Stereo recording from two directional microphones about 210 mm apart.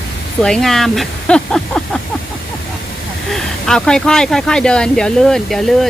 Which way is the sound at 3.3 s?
Centre (ahead or behind).